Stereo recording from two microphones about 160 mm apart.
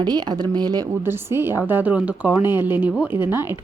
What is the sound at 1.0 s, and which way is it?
A woman's voice, 15° right (ahead or behind).